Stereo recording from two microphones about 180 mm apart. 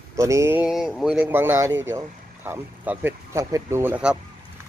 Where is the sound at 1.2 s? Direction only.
10° right (ahead or behind).